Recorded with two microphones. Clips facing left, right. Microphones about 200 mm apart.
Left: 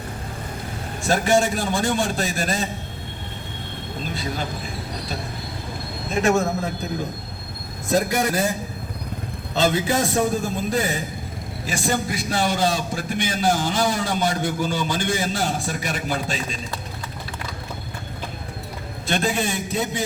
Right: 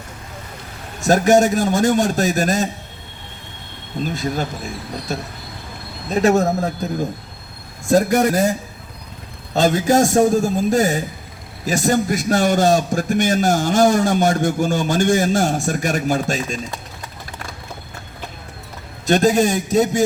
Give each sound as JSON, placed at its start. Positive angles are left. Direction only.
{"t": 1.0, "sound": "a man's voice", "side_deg": -45}
{"t": 4.0, "sound": "a man's voice", "side_deg": -45}
{"t": 6.1, "sound": "speech", "side_deg": -40}
{"t": 7.9, "sound": "a man's voice", "side_deg": -45}
{"t": 9.6, "sound": "a man's voice", "side_deg": -45}
{"t": 19.0, "sound": "a man's voice", "side_deg": -40}